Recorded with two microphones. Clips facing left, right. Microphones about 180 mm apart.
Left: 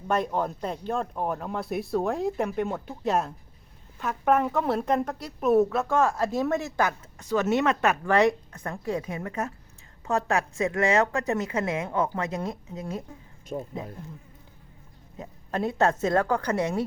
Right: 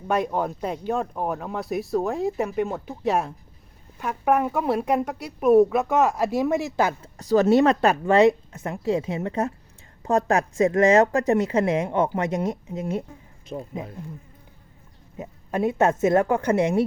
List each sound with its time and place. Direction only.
0.1 s speech: 10° right (ahead or behind)
7.2 s a woman's voice: 35° right (ahead or behind); by 13.1 s 20° right (ahead or behind)
13.5 s speech: centre (ahead or behind)
15.2 s speech: 15° right (ahead or behind)